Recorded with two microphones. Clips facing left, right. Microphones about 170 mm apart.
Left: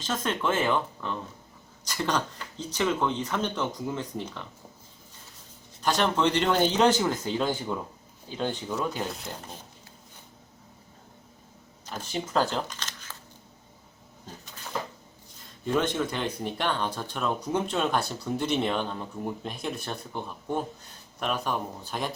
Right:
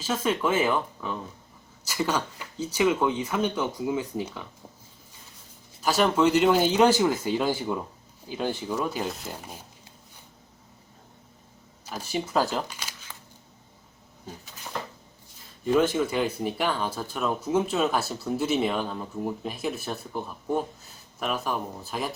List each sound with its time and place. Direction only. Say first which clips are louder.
0.0 s speech: right 3 dB; 10° right (ahead or behind)
5.8 s speech: right 3 dB; 5° right (ahead or behind)
11.9 s speech: right 2 dB; 10° right (ahead or behind)
14.3 s speech: right 3 dB; 10° right (ahead or behind)
15.6 s speech: right 4 dB; 5° right (ahead or behind)